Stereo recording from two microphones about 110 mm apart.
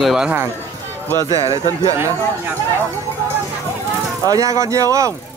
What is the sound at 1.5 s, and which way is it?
Speech, 30° right (ahead or behind).